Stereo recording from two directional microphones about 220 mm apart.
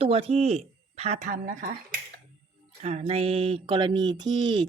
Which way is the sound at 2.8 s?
30° right (ahead or behind).